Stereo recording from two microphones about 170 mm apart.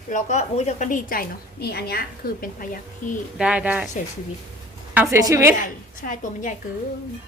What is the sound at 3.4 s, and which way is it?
Speech, 5° right (ahead or behind).